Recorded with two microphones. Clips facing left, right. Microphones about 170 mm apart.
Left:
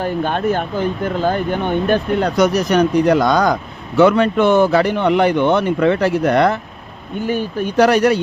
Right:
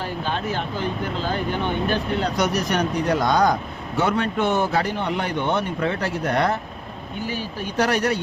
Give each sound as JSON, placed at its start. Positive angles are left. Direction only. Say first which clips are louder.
{"t": 0.0, "sound": "speech", "louder": "left 8 dB", "side_deg": 55}
{"t": 2.4, "sound": "speech", "louder": "left 10 dB", "side_deg": 90}
{"t": 7.3, "sound": "speech", "louder": "left 11 dB", "side_deg": 55}
{"t": 7.8, "sound": "speech", "louder": "left 8 dB", "side_deg": 90}